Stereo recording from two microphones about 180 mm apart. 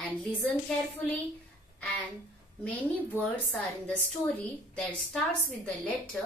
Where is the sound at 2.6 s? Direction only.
10° left (ahead or behind).